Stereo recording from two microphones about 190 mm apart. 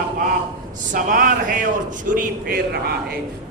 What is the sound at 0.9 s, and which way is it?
Music, 45° right (ahead or behind).